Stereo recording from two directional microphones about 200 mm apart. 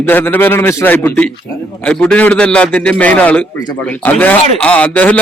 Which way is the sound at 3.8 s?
5° left (ahead or behind).